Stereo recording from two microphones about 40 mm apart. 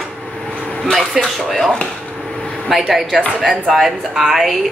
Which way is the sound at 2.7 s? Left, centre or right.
Centre.